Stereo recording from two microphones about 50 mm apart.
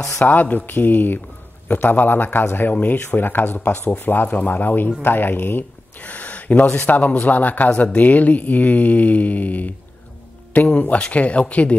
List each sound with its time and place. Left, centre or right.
0.2 s a man's voice: left
6.0 s a man's voice: left
10.7 s speech: left